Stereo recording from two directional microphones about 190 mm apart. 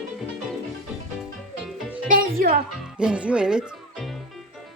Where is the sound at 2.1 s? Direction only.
50° right (ahead or behind).